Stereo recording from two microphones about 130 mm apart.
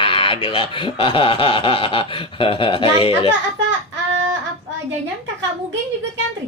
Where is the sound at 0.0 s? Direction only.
40° left (ahead or behind).